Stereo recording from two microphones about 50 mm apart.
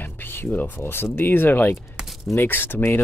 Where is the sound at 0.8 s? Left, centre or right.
Left.